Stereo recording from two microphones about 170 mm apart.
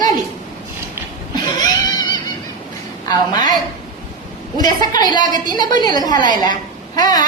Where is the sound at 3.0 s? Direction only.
25° left (ahead or behind).